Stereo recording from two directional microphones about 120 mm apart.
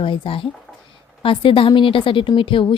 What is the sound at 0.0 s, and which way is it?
A woman's voice, 45° left (ahead or behind).